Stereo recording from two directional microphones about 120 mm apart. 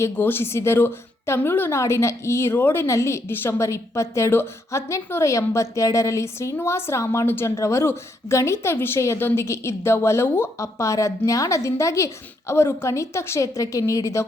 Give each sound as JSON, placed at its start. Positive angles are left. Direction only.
{"t": 0.0, "sound": "a woman's voice", "side_deg": 20}